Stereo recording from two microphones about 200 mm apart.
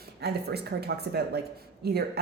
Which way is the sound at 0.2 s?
55° right (ahead or behind).